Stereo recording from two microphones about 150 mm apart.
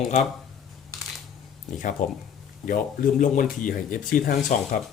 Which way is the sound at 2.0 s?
60° left (ahead or behind).